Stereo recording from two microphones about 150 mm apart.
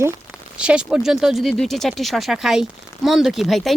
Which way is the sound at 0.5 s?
5° right (ahead or behind).